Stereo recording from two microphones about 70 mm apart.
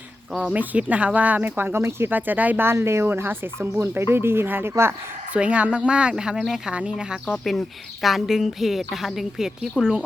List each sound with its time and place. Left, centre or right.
0.5 s speech: right
2.7 s speech: right
5.3 s speech: centre
7.3 s a woman's voice: centre